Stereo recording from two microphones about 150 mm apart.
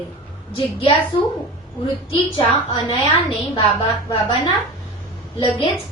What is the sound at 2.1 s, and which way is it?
Speech, 35° left (ahead or behind).